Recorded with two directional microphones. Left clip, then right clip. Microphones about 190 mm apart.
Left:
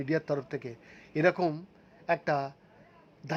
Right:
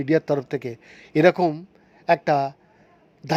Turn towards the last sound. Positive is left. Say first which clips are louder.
# right 12 dB
turn(degrees=-25)  # may be behind; listen again after turning